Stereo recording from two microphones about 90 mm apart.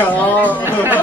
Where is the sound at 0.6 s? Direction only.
20° right (ahead or behind).